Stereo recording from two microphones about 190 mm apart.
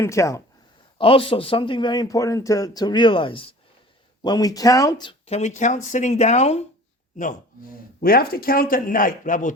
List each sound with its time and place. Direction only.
0.0 s speech: 15° left (ahead or behind)
0.9 s a man's voice: 30° left (ahead or behind); by 9.5 s 45° left (ahead or behind)